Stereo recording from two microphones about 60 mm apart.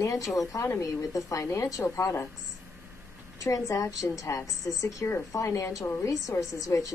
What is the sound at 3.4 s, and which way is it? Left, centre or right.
A woman's voice, left.